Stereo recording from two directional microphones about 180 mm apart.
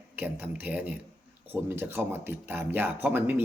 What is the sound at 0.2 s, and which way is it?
A man's voice, 10° right (ahead or behind).